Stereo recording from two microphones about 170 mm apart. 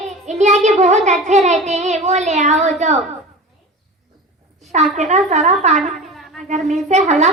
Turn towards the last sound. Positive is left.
turn(degrees=-40)  # may be behind; listen again after turning